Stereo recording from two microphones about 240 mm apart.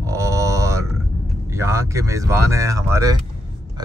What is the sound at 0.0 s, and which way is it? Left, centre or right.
Grunt, centre.